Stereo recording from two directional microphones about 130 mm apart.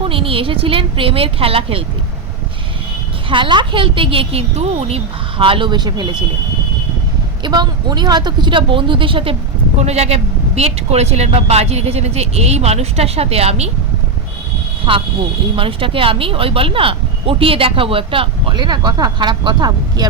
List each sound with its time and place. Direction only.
0.0 s speech: 45° right (ahead or behind)
3.2 s a woman's voice: 40° right (ahead or behind)
7.4 s a woman's voice: 35° right (ahead or behind)
9.8 s speech: 55° right (ahead or behind)
14.9 s speech: 45° right (ahead or behind)